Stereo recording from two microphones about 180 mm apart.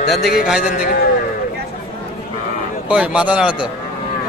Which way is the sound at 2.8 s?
5° right (ahead or behind).